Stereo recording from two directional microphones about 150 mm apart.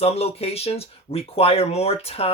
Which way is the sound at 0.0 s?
40° left (ahead or behind).